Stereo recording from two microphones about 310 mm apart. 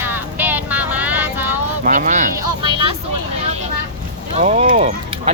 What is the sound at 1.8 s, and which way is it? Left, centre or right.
Speech, right.